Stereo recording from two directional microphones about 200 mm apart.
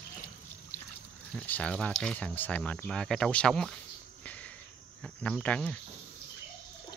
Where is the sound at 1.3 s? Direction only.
5° left (ahead or behind).